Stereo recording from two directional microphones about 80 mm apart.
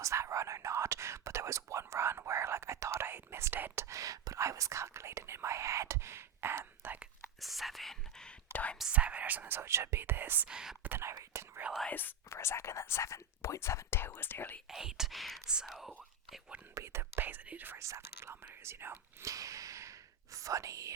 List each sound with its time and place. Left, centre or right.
0.0 s whispering: right
7.4 s whispering: centre
8.9 s whispering: centre
10.5 s whispering: centre
10.8 s whispering: right
11.1 s whispering: right
11.9 s whispering: left
12.3 s whispering: left
14.7 s whispering: centre
16.7 s whispering: right
19.3 s whispering: right